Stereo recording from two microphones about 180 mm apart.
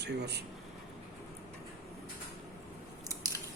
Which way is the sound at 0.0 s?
65° right (ahead or behind).